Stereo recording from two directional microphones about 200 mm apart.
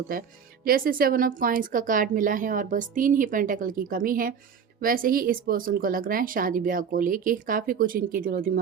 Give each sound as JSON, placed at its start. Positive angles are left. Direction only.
{"t": 0.1, "sound": "speech", "side_deg": -45}